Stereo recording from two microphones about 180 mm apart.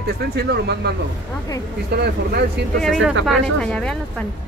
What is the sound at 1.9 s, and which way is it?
Speech, 65° right (ahead or behind).